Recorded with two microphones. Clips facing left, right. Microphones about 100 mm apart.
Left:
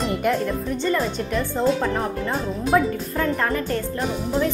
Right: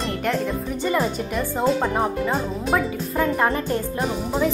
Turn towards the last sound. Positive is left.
turn(degrees=-5)  # may be behind; listen again after turning